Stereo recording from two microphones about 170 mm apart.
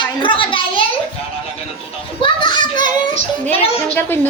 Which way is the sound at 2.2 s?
25° left (ahead or behind).